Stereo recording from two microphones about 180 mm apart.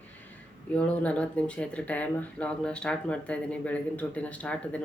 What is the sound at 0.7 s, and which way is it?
Speech, 5° left (ahead or behind).